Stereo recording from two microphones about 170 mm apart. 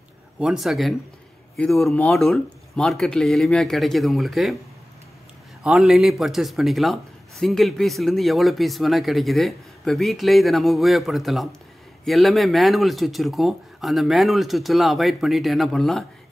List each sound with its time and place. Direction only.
0.4 s a man's voice: centre (ahead or behind)
5.6 s a man's voice: 5° right (ahead or behind)